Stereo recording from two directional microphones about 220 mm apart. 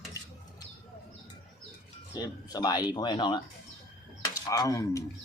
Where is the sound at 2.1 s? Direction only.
20° left (ahead or behind).